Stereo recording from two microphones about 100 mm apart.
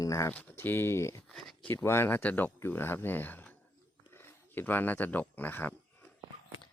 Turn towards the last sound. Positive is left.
turn(degrees=20)  # may be behind; listen again after turning